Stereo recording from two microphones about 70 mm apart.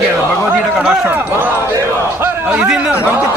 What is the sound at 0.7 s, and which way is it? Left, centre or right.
Speech, centre.